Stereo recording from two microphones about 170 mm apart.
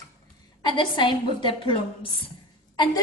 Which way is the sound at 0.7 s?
30° left (ahead or behind).